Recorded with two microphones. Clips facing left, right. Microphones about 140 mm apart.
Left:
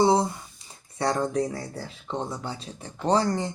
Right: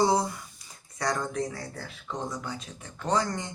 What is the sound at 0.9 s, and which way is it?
Speech, 30° left (ahead or behind).